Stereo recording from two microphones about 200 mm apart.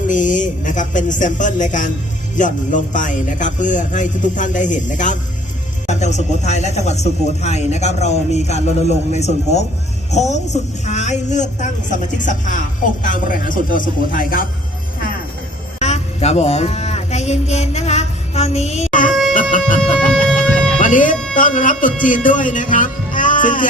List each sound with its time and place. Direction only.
0.1 s speech: 40° left (ahead or behind)
15.8 s mantra: 35° left (ahead or behind)
19.3 s a sound: 40° left (ahead or behind)
20.7 s music: 40° left (ahead or behind)
21.3 s speech: 40° left (ahead or behind)